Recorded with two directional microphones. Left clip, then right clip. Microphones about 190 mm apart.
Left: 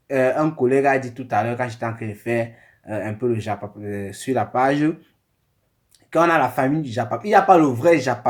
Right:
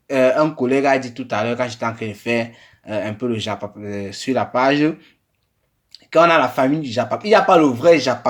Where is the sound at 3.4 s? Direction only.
40° right (ahead or behind).